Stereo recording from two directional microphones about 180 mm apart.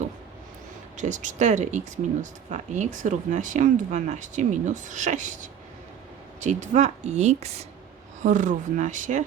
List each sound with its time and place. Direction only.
0.9 s speech: 45° right (ahead or behind)